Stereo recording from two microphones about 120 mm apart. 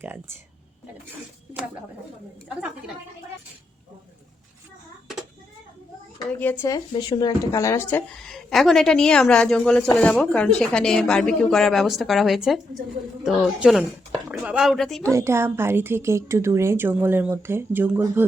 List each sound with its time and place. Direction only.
0.0 s speech: 20° right (ahead or behind)
6.3 s speech: 15° left (ahead or behind)
6.7 s speech: 35° left (ahead or behind)
8.3 s speech: centre (ahead or behind)
15.0 s a woman's voice: 25° right (ahead or behind)